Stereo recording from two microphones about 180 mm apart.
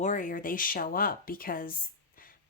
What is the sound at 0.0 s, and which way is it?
Speech, 45° left (ahead or behind).